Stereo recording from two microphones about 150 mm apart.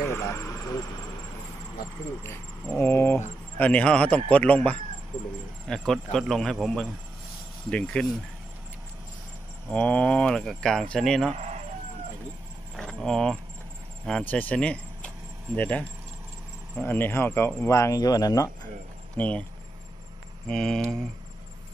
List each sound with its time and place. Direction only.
0.0 s vehicle: 15° left (ahead or behind)
2.8 s speech: 15° left (ahead or behind)
5.7 s speech: 5° left (ahead or behind)
9.7 s speech: 10° left (ahead or behind)
11.3 s chicken: 50° right (ahead or behind)
12.7 s a sound: 5° left (ahead or behind)
14.0 s speech: 5° left (ahead or behind); by 18.5 s 25° left (ahead or behind)
19.1 s speech: 10° left (ahead or behind)
20.4 s speech: 5° left (ahead or behind)